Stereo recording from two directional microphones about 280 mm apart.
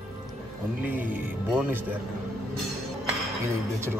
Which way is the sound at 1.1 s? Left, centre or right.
Centre.